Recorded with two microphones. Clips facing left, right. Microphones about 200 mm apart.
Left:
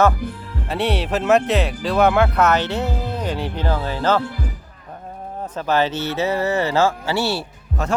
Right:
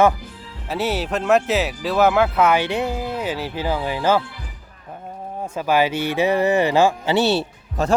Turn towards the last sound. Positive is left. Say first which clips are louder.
# right 3 dB
turn(degrees=-20)  # may be behind; listen again after turning